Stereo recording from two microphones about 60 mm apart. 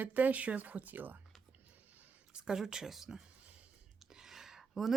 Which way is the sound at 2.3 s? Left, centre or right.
Centre.